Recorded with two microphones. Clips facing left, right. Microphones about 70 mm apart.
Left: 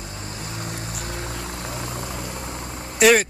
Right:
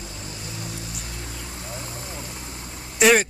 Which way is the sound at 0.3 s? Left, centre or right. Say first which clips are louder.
Left 4 dB; left.